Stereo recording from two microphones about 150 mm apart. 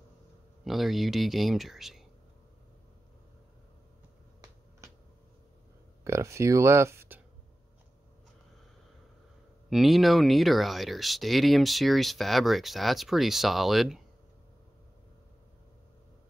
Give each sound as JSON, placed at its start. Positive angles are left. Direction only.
{"t": 0.7, "sound": "speech", "side_deg": 0}
{"t": 6.0, "sound": "speech", "side_deg": -20}
{"t": 9.7, "sound": "speech", "side_deg": 0}